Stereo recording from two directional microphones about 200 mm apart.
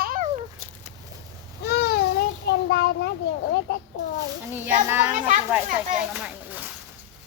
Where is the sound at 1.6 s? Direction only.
50° left (ahead or behind).